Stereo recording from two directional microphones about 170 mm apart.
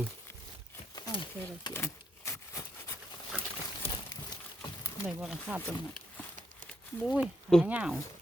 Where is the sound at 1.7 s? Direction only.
15° left (ahead or behind).